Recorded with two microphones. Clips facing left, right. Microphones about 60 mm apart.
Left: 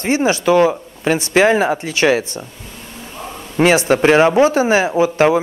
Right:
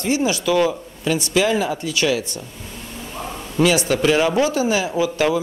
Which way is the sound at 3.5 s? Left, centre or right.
Left.